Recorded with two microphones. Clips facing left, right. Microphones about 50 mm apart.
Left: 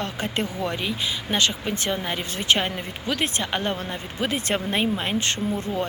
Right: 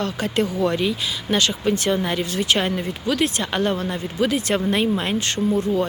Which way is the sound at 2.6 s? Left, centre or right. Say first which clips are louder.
Right 4 dB; centre.